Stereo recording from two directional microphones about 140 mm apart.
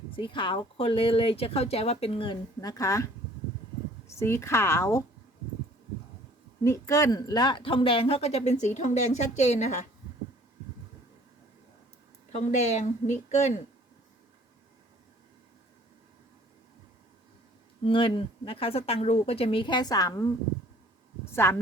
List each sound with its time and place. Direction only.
0.1 s speech: 35° left (ahead or behind)
2.6 s speech: 25° left (ahead or behind)
6.7 s speech: 20° left (ahead or behind); by 9.8 s 55° left (ahead or behind)
12.3 s speech: 50° left (ahead or behind)
17.8 s speech: 40° left (ahead or behind)
21.4 s speech: 20° left (ahead or behind)